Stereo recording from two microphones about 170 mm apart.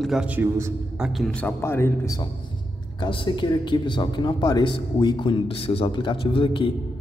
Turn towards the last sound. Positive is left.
turn(degrees=30)  # may be behind; listen again after turning